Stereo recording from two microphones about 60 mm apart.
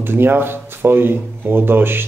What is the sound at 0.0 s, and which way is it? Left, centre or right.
Speech, right.